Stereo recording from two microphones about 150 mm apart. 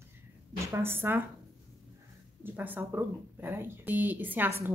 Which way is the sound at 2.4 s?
10° right (ahead or behind).